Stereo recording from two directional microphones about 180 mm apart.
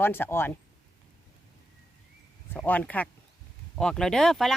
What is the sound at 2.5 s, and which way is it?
Speech, 10° left (ahead or behind).